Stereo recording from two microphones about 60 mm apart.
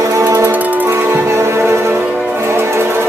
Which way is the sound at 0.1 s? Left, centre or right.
Right.